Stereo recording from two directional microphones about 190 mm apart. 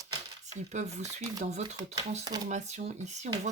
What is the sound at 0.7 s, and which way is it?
Speech, 35° right (ahead or behind).